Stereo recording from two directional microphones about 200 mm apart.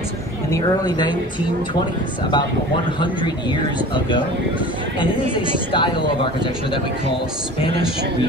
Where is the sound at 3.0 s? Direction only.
25° left (ahead or behind).